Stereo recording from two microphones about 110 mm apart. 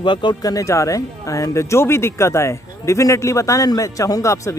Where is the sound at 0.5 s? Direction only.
30° left (ahead or behind).